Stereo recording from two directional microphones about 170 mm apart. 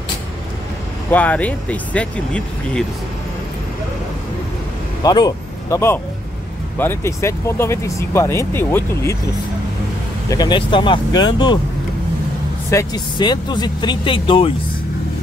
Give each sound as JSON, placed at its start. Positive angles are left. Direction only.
{"t": 1.1, "sound": "speech", "side_deg": 10}
{"t": 5.0, "sound": "speech", "side_deg": 20}
{"t": 10.3, "sound": "speech", "side_deg": 25}
{"t": 12.7, "sound": "speech", "side_deg": 25}